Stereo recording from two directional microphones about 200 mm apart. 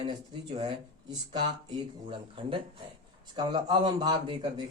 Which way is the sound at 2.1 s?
25° right (ahead or behind).